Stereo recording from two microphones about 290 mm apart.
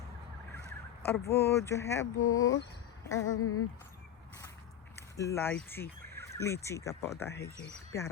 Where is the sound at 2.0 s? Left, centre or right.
Left.